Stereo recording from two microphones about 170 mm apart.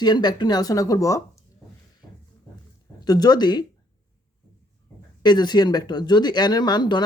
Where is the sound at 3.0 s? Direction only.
25° left (ahead or behind).